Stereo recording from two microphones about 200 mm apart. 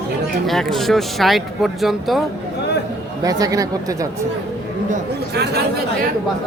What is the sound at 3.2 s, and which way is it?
Speech, 20° right (ahead or behind).